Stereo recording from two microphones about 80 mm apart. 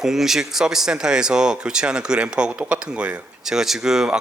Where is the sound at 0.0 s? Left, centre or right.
Centre.